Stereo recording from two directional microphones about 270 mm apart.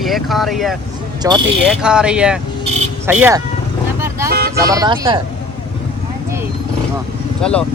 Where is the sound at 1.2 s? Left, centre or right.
Centre.